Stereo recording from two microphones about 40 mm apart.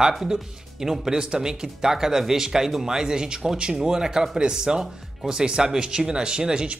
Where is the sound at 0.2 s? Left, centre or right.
Centre.